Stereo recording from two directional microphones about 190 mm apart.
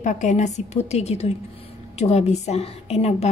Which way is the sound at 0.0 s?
40° left (ahead or behind).